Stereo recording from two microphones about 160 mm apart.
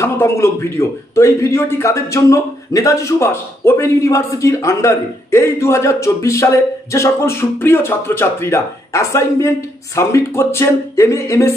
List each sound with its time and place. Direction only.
0.0 s a man's voice: 15° left (ahead or behind)